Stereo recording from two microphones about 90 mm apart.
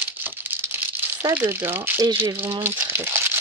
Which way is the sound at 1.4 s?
25° right (ahead or behind).